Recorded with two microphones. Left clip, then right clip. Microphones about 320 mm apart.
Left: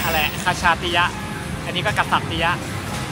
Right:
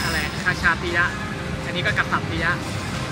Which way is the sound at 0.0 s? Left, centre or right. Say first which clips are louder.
Left 3 dB; centre.